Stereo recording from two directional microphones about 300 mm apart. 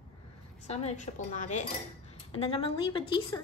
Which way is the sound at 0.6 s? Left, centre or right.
Left.